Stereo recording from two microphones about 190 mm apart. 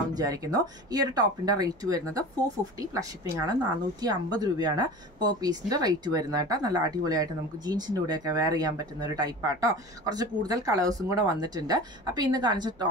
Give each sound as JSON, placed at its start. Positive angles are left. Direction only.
{"t": 0.1, "sound": "a woman's voice", "side_deg": -20}